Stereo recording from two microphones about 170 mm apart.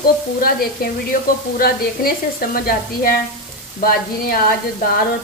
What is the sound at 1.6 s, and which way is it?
Speech, 60° left (ahead or behind).